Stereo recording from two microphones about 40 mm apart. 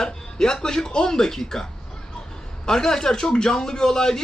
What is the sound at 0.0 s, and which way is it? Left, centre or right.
Speech, centre.